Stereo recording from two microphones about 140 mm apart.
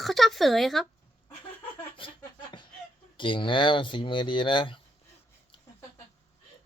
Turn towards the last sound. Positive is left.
turn(degrees=35)  # may be behind; listen again after turning